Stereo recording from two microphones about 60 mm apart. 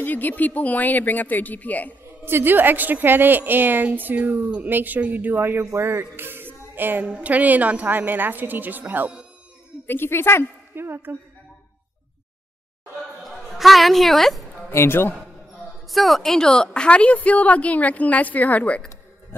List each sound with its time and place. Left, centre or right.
0.0 s a woman's voice: left
2.2 s a woman's voice: right
5.6 s speech: right
7.1 s a woman's voice: right
9.8 s speech: left
10.7 s a sound: right
13.2 s a sound: centre
14.7 s speech: left
15.9 s a woman's voice: centre; by 18.8 s left